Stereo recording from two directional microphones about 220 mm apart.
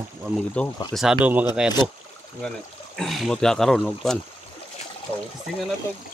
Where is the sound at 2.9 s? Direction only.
Centre (ahead or behind).